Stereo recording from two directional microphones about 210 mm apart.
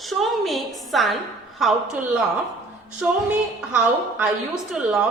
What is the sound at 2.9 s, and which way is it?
Music, 5° right (ahead or behind).